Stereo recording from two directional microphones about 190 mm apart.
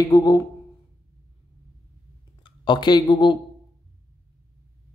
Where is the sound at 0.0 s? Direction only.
20° left (ahead or behind).